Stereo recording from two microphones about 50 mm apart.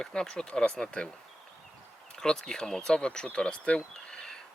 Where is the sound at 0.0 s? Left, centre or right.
Centre.